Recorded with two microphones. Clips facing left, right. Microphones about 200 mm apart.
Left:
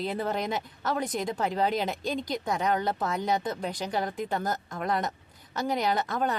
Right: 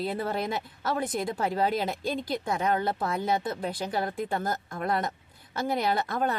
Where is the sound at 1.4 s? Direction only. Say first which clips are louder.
Even; 40° right (ahead or behind).